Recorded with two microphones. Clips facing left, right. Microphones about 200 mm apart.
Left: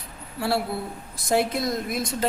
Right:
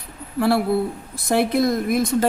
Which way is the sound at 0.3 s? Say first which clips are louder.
Right 8 dB; 55° right (ahead or behind).